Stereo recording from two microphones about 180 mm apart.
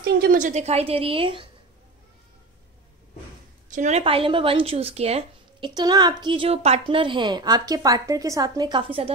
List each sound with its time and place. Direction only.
0.0 s speech: 55° right (ahead or behind); by 1.5 s 30° right (ahead or behind)
3.7 s speech: 40° right (ahead or behind)
5.8 s a woman's voice: 25° right (ahead or behind)